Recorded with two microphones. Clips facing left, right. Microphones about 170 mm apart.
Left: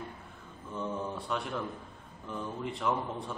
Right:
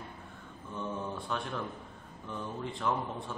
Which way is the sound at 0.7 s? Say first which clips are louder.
Left 2 dB; centre (ahead or behind).